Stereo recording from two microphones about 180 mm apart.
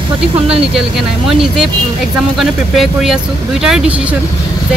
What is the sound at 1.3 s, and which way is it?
Speech, centre (ahead or behind).